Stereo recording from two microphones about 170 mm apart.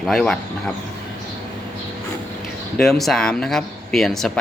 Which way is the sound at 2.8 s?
Centre (ahead or behind).